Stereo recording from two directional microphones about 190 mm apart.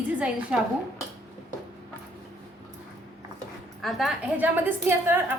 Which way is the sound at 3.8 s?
Centre (ahead or behind).